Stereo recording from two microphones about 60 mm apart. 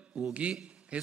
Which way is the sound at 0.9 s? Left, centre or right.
Centre.